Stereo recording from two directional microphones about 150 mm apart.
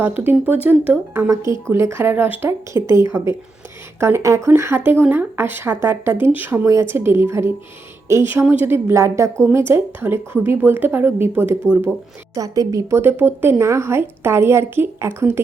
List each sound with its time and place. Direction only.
0.3 s a woman's voice: 10° right (ahead or behind)